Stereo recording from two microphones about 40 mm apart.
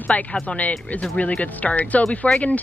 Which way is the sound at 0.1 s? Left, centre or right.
Left.